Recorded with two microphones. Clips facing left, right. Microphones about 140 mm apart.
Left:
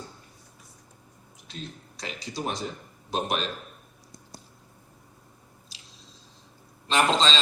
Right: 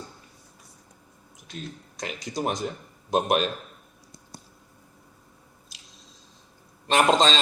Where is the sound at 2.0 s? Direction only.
45° right (ahead or behind).